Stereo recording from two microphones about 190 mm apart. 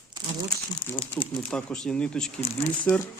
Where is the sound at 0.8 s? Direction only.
25° left (ahead or behind).